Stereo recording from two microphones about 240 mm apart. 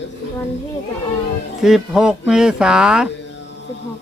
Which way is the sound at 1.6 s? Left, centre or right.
Centre.